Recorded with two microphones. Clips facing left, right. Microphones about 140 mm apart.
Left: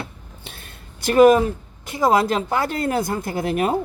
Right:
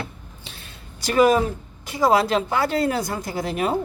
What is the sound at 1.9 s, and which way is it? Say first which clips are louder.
A woman's voice: left 1 dB; 50° left (ahead or behind).